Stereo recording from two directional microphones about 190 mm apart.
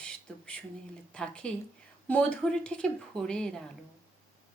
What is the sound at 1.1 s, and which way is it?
A woman's voice, 5° left (ahead or behind).